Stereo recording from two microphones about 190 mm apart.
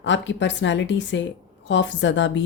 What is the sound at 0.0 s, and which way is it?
Speech, 70° left (ahead or behind).